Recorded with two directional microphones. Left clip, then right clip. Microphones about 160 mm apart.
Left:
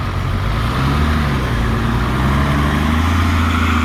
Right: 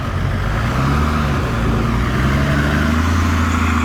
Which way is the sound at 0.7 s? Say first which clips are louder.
Even; 10° right (ahead or behind).